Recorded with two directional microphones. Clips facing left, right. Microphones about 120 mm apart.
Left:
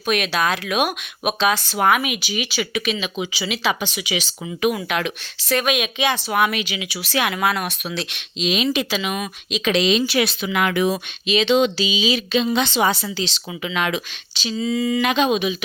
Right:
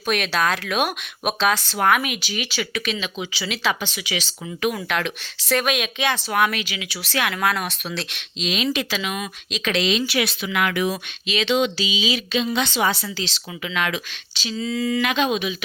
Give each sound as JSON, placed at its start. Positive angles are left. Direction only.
{"t": 0.0, "sound": "speech", "side_deg": 5}
{"t": 10.1, "sound": "speech", "side_deg": 30}